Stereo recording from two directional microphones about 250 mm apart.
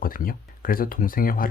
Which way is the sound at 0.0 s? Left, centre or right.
Left.